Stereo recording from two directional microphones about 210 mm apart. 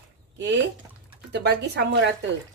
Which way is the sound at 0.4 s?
55° right (ahead or behind).